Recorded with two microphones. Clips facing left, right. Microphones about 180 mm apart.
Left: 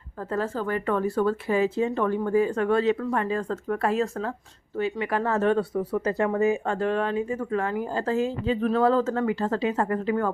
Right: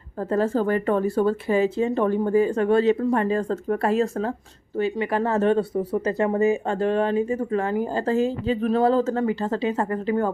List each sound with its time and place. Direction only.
0.3 s speech: 30° right (ahead or behind)